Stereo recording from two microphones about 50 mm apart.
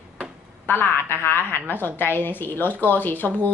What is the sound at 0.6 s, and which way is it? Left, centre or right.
A woman's voice, left.